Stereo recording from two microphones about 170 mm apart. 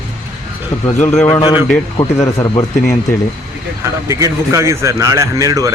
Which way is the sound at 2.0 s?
10° left (ahead or behind).